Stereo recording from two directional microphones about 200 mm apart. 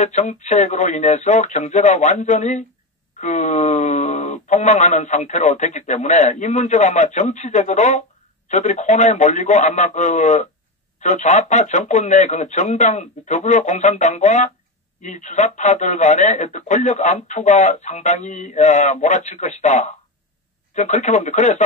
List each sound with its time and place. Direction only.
0.0 s speech: 35° left (ahead or behind)